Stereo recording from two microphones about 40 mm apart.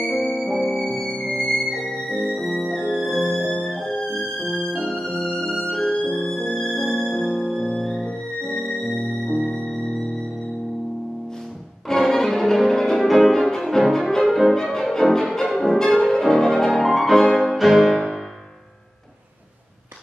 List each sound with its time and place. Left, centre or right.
0.0 s music: centre
5.7 s music: centre
6.9 s music: centre
12.0 s music: centre